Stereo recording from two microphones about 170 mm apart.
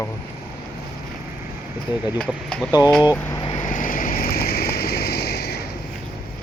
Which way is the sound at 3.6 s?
50° left (ahead or behind).